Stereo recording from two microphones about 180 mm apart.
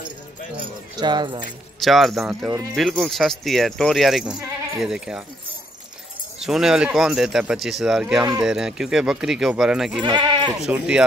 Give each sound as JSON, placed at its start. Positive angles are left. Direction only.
{"t": 0.9, "sound": "speech", "side_deg": -25}
{"t": 1.8, "sound": "speech", "side_deg": 0}
{"t": 6.4, "sound": "speech", "side_deg": 0}
{"t": 10.0, "sound": "goat", "side_deg": -25}
{"t": 10.6, "sound": "speech", "side_deg": -5}